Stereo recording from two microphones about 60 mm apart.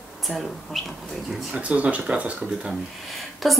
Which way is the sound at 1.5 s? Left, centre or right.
Right.